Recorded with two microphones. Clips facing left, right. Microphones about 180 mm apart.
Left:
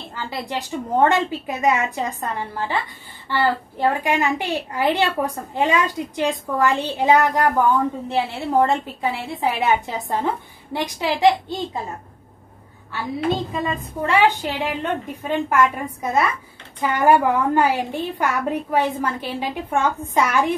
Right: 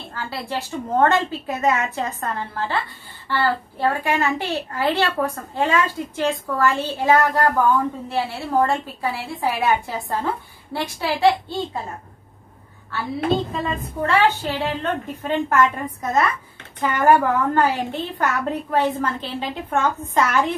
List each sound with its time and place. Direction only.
0.1 s a woman's voice: 15° left (ahead or behind)
12.9 s a woman's voice: 15° left (ahead or behind)